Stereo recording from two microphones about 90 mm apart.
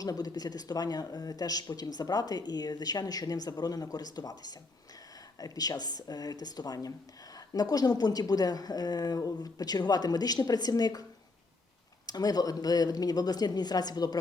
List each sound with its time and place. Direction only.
0.0 s speech: 45° left (ahead or behind)
12.0 s speech: 45° left (ahead or behind)